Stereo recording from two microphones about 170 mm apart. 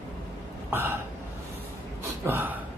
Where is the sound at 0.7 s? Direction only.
15° right (ahead or behind).